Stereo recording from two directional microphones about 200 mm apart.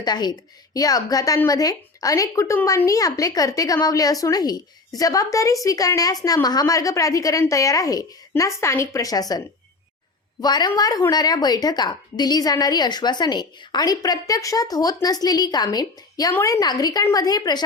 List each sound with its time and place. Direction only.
0.0 s a woman's voice: 20° left (ahead or behind)
10.4 s a woman's voice: 20° left (ahead or behind)